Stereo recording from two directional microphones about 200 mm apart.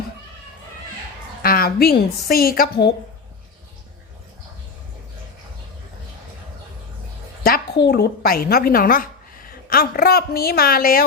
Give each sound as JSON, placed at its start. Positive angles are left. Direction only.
{"t": 1.4, "sound": "a woman's voice", "side_deg": 50}
{"t": 7.4, "sound": "a sound", "side_deg": 45}
{"t": 7.9, "sound": "a woman's voice", "side_deg": 55}